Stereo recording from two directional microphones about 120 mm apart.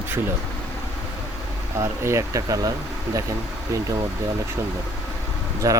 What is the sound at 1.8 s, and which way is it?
Speech, 25° right (ahead or behind).